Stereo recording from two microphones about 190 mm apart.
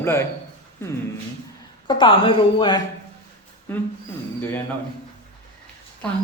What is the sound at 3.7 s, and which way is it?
Speech, 10° left (ahead or behind).